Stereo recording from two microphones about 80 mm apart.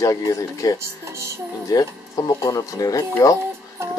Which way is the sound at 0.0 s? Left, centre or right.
Left.